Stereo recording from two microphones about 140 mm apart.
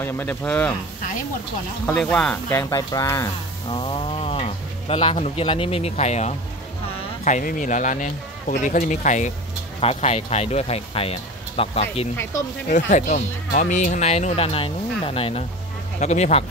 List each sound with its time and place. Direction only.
0.0 s speech: 15° left (ahead or behind)
2.0 s speech: 10° left (ahead or behind)
2.5 s speech: 25° left (ahead or behind)
3.7 s speech: 40° left (ahead or behind)
7.2 s speech: 65° left (ahead or behind)
9.8 s speech: 50° left (ahead or behind)
12.6 s speech: 65° left (ahead or behind); by 15.4 s 45° left (ahead or behind)
16.0 s speech: 55° left (ahead or behind)